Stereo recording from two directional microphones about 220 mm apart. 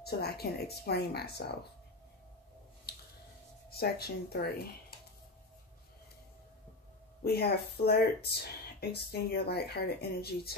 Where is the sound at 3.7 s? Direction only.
45° left (ahead or behind).